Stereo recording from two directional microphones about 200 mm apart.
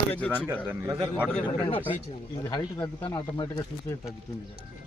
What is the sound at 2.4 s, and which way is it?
Speech, 20° left (ahead or behind).